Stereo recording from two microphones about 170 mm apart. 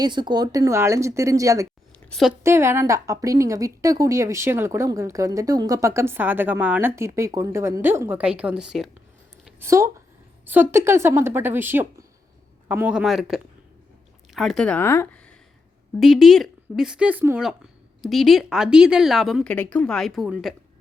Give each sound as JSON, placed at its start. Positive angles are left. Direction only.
{"t": 0.0, "sound": "a woman's voice", "side_deg": -25}
{"t": 2.0, "sound": "speech", "side_deg": 0}
{"t": 2.4, "sound": "a woman's voice", "side_deg": -15}
{"t": 9.6, "sound": "a woman's voice", "side_deg": -15}
{"t": 16.0, "sound": "speech", "side_deg": 0}